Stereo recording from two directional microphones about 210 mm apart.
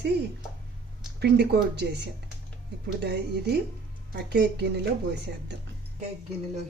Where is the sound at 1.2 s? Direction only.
50° right (ahead or behind).